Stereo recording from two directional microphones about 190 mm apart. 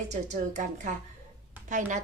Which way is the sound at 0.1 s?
40° right (ahead or behind).